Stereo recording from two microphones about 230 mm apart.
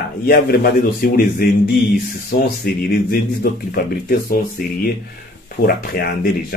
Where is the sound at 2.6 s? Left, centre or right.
Left.